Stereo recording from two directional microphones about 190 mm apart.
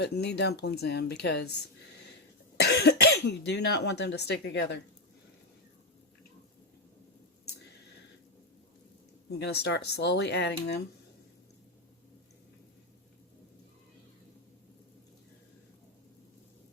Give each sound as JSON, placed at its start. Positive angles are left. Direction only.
{"t": 0.0, "sound": "speech", "side_deg": 60}
{"t": 2.6, "sound": "speech", "side_deg": 60}
{"t": 9.4, "sound": "speech", "side_deg": 60}